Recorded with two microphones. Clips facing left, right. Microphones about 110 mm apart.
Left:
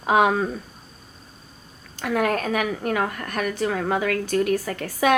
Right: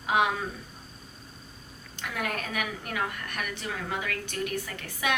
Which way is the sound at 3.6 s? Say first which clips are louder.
Left 12 dB; 55° left (ahead or behind).